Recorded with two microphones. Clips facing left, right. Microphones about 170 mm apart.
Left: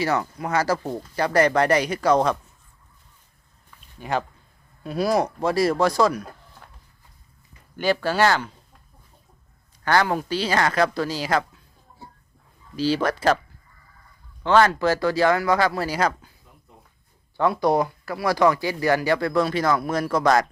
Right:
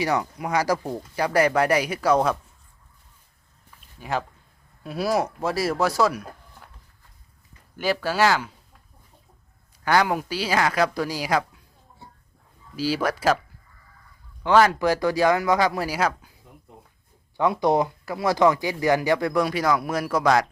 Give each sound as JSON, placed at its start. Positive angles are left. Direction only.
{"t": 0.0, "sound": "speech", "side_deg": -15}
{"t": 4.0, "sound": "speech", "side_deg": 0}
{"t": 7.8, "sound": "speech", "side_deg": -5}
{"t": 9.8, "sound": "speech", "side_deg": -10}
{"t": 12.7, "sound": "speech", "side_deg": -10}
{"t": 14.4, "sound": "speech", "side_deg": -10}
{"t": 17.3, "sound": "speech", "side_deg": -15}